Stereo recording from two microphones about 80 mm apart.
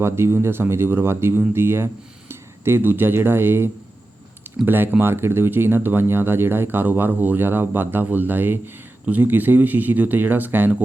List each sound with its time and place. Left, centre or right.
0.0 s speech: right